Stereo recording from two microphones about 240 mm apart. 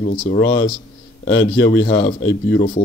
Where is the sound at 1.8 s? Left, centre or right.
Left.